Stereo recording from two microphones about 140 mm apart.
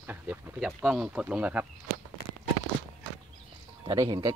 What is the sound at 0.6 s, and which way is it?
Speech, 5° right (ahead or behind).